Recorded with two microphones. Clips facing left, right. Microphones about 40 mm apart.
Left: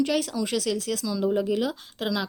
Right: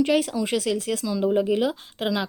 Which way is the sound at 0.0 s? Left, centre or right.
Right.